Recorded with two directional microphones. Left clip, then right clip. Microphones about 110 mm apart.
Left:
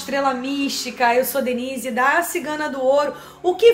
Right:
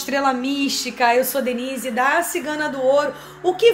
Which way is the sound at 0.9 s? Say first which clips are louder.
Even; 60° right (ahead or behind).